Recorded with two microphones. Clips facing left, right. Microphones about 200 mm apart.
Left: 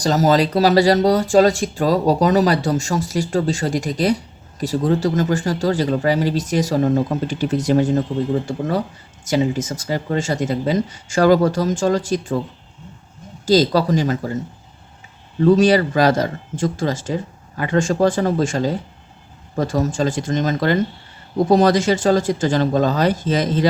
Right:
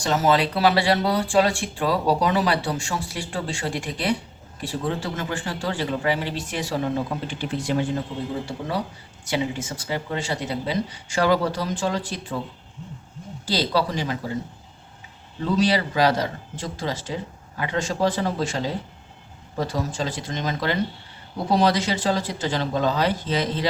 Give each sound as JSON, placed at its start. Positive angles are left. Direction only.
{"t": 0.0, "sound": "speech", "side_deg": 40}
{"t": 13.4, "sound": "speech", "side_deg": 45}
{"t": 15.4, "sound": "speech", "side_deg": 45}